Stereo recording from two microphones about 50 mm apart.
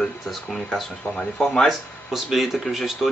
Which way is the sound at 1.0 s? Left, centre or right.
Left.